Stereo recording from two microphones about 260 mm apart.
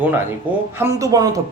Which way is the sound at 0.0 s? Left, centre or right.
Centre.